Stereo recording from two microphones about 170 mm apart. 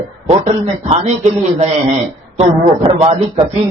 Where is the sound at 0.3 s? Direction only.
40° right (ahead or behind).